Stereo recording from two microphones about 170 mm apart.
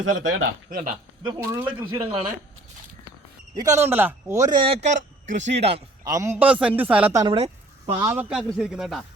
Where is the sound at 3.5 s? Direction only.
20° right (ahead or behind).